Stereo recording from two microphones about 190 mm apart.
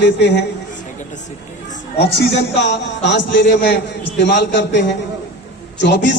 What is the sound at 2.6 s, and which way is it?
Speech, 65° left (ahead or behind).